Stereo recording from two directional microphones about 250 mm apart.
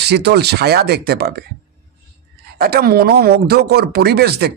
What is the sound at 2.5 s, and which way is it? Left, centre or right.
Speech, right.